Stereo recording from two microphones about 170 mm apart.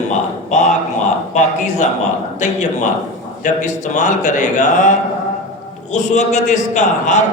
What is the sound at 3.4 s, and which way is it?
A man's voice, 45° left (ahead or behind).